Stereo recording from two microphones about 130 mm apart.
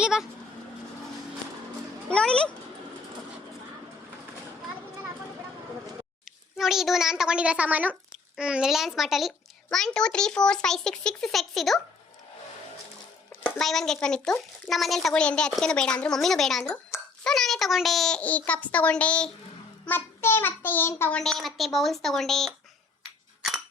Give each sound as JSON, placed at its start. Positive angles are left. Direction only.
{"t": 0.0, "sound": "speech", "side_deg": -5}
{"t": 2.0, "sound": "speech", "side_deg": 5}
{"t": 6.6, "sound": "a woman's voice", "side_deg": 0}
{"t": 13.6, "sound": "a woman's voice", "side_deg": 0}
{"t": 21.2, "sound": "a woman's voice", "side_deg": 5}